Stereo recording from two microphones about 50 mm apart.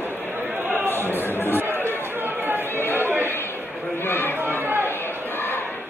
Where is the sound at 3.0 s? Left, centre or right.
Right.